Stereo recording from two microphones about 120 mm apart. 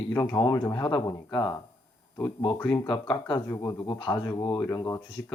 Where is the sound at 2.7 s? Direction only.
40° left (ahead or behind).